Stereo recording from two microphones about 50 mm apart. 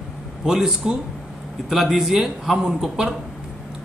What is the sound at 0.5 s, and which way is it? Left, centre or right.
A man's voice, centre.